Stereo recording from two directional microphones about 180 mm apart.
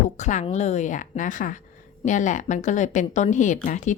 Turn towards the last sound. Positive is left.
turn(degrees=45)  # may be behind; listen again after turning